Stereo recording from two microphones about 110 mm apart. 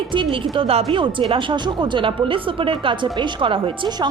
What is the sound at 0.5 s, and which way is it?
A woman's voice, 60° right (ahead or behind).